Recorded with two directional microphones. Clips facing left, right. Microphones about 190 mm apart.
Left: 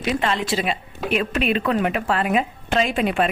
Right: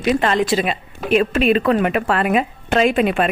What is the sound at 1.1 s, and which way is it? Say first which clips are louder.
Speech: right 6 dB; 40° right (ahead or behind).